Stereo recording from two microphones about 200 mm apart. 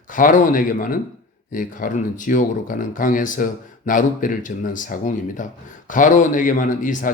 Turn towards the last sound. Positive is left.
turn(degrees=40)  # may be behind; listen again after turning